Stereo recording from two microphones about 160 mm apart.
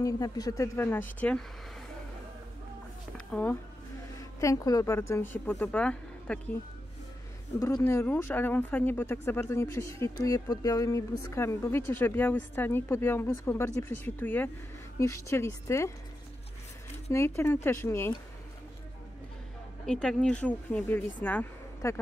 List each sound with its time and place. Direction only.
0.0 s speech: 25° left (ahead or behind)
3.3 s speech: 10° left (ahead or behind)
4.2 s a woman's voice: 20° left (ahead or behind)
7.5 s speech: 20° left (ahead or behind)
17.1 s speech: 15° left (ahead or behind)
19.9 s speech: 5° left (ahead or behind)